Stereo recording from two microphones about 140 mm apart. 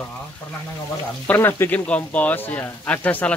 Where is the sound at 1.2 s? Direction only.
15° left (ahead or behind).